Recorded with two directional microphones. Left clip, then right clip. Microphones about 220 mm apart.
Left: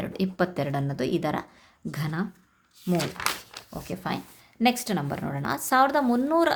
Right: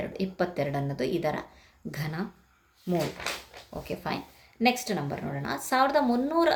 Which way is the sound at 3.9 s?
25° left (ahead or behind).